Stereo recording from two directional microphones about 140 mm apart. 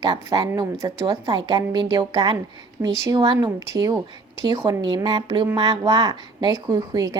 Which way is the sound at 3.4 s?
25° right (ahead or behind).